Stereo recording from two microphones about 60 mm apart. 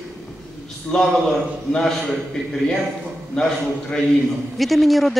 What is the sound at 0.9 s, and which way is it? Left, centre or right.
Speech, centre.